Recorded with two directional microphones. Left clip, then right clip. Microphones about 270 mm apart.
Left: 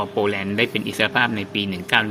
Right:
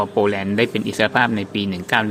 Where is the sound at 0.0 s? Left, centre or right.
Centre.